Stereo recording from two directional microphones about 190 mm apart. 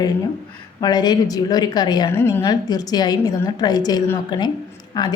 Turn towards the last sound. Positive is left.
turn(degrees=20)  # may be behind; listen again after turning